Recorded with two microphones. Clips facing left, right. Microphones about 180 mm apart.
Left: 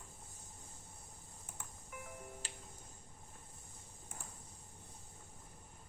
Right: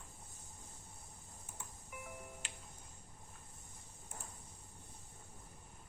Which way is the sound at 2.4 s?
35° left (ahead or behind).